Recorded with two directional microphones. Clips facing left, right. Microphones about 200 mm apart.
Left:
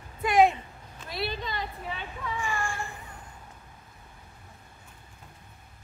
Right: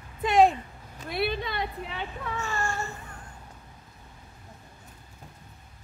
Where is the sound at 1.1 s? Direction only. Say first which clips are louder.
Right 4 dB; 55° right (ahead or behind).